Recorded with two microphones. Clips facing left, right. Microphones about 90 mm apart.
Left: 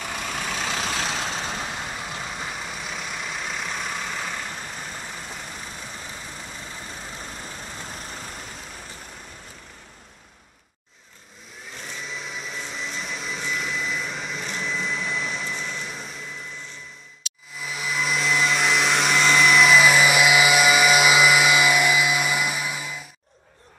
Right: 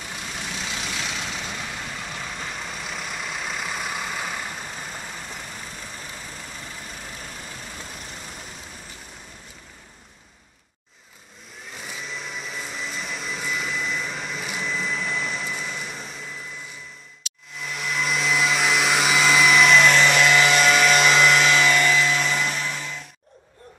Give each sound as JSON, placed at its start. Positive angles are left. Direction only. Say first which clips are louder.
{"t": 0.0, "sound": "vehicle", "louder": "left 4 dB", "side_deg": 65}
{"t": 2.0, "sound": "vehicle", "louder": "left 1 dB", "side_deg": 10}
{"t": 11.7, "sound": "vehicle", "louder": "even", "side_deg": -5}
{"t": 17.6, "sound": "vacuum cleaner", "louder": "even", "side_deg": 0}